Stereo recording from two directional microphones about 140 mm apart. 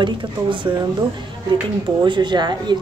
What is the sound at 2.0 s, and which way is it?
Speech, 35° right (ahead or behind).